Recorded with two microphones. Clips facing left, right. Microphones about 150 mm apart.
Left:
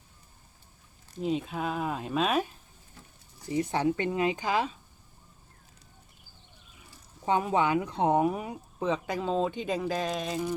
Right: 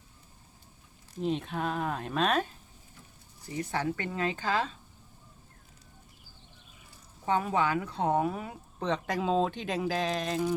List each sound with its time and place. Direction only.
1.2 s speech: 5° left (ahead or behind)
3.5 s speech: 20° left (ahead or behind)
7.3 s speech: 20° left (ahead or behind); by 10.5 s 5° left (ahead or behind)